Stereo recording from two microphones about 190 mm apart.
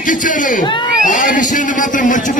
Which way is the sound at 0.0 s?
45° left (ahead or behind).